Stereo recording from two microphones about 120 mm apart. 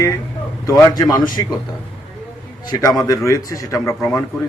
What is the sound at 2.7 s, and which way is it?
A man's voice, 30° left (ahead or behind).